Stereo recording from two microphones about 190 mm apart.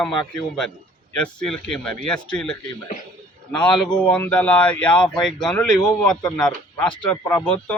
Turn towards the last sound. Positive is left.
turn(degrees=5)  # may be behind; listen again after turning